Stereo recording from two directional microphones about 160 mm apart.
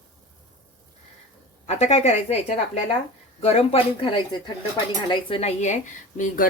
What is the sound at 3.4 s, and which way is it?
A woman's voice, 40° left (ahead or behind).